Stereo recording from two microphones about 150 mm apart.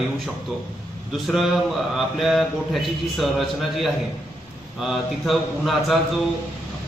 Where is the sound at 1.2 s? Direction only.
Centre (ahead or behind).